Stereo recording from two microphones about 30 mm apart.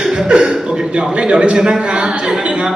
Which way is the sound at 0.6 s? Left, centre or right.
Right.